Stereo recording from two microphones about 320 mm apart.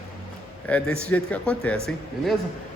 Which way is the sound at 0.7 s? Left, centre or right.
Centre.